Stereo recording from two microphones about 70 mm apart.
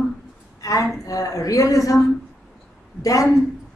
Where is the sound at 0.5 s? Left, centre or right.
Left.